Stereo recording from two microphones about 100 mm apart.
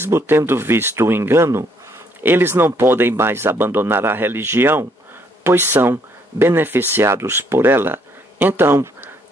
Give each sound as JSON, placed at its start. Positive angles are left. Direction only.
{"t": 0.0, "sound": "speech", "side_deg": -25}